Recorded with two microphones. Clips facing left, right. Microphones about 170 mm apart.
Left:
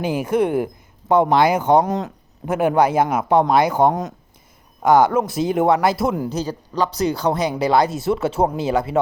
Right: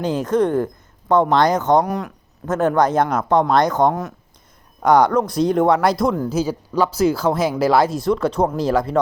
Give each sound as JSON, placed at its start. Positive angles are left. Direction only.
{"t": 0.0, "sound": "speech", "side_deg": 10}
{"t": 1.8, "sound": "speech", "side_deg": 20}
{"t": 2.5, "sound": "speech", "side_deg": 10}
{"t": 4.8, "sound": "a man's voice", "side_deg": 5}